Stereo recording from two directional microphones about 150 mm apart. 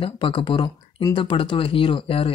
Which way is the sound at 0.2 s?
30° left (ahead or behind).